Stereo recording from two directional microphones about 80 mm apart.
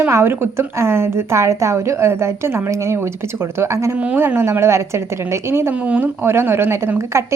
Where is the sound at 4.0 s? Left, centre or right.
Centre.